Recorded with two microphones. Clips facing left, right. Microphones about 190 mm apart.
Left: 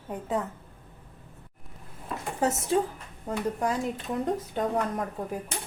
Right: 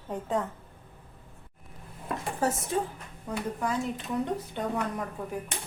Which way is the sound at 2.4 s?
25° left (ahead or behind).